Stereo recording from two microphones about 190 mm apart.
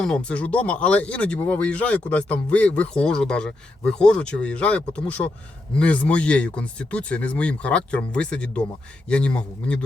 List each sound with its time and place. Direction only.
0.0 s a man's voice: 5° left (ahead or behind)